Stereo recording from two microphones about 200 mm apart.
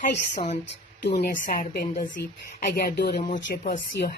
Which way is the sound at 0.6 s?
55° left (ahead or behind).